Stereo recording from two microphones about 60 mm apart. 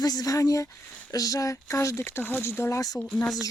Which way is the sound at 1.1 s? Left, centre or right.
Left.